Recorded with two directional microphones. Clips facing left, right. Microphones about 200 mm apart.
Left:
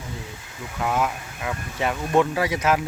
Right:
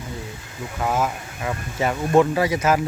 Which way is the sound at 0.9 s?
5° right (ahead or behind).